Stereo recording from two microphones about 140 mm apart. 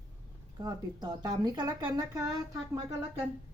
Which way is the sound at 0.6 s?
30° right (ahead or behind).